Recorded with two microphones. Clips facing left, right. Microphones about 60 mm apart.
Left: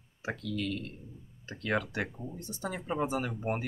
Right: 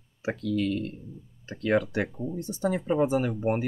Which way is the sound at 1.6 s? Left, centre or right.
Centre.